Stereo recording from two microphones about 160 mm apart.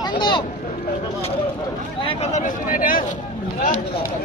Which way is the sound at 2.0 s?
45° left (ahead or behind).